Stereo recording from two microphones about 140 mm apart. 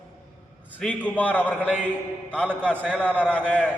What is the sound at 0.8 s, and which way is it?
Speech, 5° left (ahead or behind).